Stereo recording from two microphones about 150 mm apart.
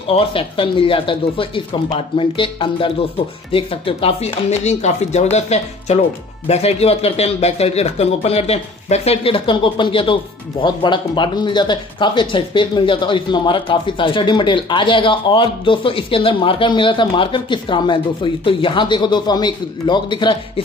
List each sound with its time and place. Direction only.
0.1 s speech: 40° left (ahead or behind)